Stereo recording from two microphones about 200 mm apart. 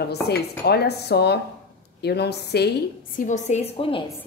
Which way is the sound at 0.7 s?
55° left (ahead or behind).